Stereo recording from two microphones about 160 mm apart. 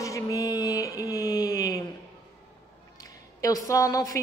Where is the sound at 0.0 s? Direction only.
20° left (ahead or behind).